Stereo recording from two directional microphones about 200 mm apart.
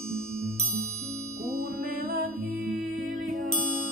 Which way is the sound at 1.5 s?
50° right (ahead or behind).